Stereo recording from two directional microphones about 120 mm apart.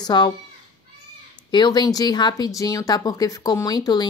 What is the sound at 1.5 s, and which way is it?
A woman's voice, 35° left (ahead or behind).